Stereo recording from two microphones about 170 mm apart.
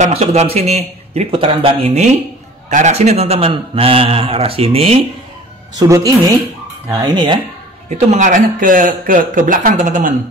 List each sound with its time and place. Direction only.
0.0 s a man's voice: 40° right (ahead or behind)
5.8 s a woman's voice: 20° right (ahead or behind)
8.1 s speech: 50° right (ahead or behind)